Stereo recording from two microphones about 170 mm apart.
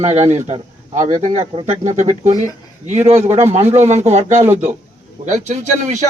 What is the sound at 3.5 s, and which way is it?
Speech, 40° right (ahead or behind).